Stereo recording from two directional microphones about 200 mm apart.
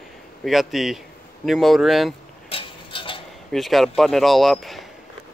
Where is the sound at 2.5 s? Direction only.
25° left (ahead or behind).